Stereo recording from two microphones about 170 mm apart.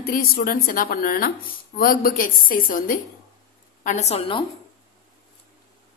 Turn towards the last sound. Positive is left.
turn(degrees=35)  # may be behind; listen again after turning